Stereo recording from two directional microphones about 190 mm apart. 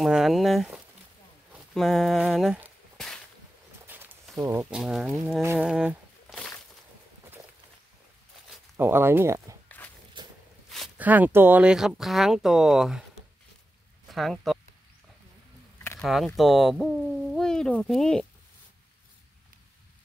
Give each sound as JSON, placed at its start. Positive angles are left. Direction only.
{"t": 0.0, "sound": "speech", "side_deg": 0}
{"t": 3.8, "sound": "walk", "side_deg": -10}
{"t": 4.4, "sound": "speech", "side_deg": -15}
{"t": 4.6, "sound": "speech", "side_deg": -5}
{"t": 5.4, "sound": "a sound", "side_deg": -10}
{"t": 8.7, "sound": "speech", "side_deg": -10}
{"t": 9.8, "sound": "walk", "side_deg": 10}
{"t": 10.2, "sound": "walk", "side_deg": -25}
{"t": 10.7, "sound": "speech", "side_deg": -5}
{"t": 14.1, "sound": "speech", "side_deg": 0}
{"t": 16.0, "sound": "speech", "side_deg": 0}